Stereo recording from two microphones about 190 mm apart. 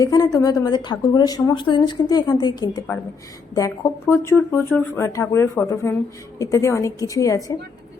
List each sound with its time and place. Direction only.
0.0 s a woman's voice: 20° left (ahead or behind)